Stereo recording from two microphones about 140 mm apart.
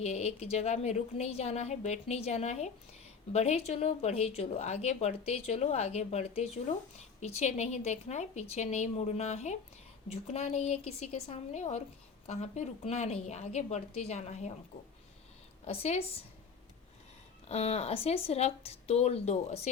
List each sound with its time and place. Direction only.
0.0 s a woman's voice: 50° left (ahead or behind)
15.6 s a woman's voice: 50° left (ahead or behind)
17.5 s a woman's voice: 45° left (ahead or behind)